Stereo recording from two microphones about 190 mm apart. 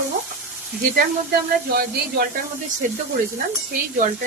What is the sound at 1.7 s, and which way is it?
Speech, 55° right (ahead or behind).